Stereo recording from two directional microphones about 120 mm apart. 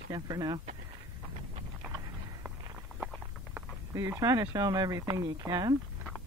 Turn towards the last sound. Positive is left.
turn(degrees=-35)  # may be behind; listen again after turning